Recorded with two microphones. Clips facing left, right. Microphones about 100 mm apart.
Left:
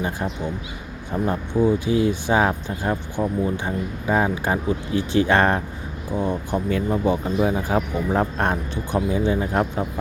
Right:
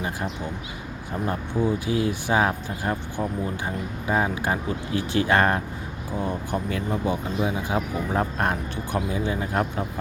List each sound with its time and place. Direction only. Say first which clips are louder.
1.3 s speech: left 5 dB; 20° left (ahead or behind)
6.7 s speech: left 7 dB; 30° left (ahead or behind)